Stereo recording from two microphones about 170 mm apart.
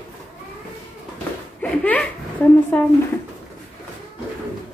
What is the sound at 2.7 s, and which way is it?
Speech, 10° left (ahead or behind).